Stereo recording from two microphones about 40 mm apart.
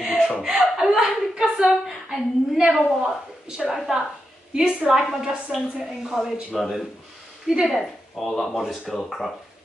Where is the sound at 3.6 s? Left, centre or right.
Centre.